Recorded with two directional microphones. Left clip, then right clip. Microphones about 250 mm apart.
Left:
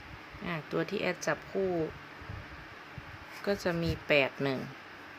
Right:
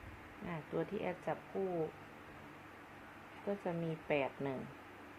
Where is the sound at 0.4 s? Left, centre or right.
Left.